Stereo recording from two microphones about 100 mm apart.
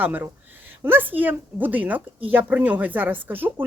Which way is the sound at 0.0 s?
20° right (ahead or behind).